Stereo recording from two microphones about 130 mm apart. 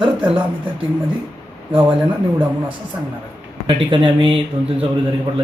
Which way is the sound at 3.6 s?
40° right (ahead or behind).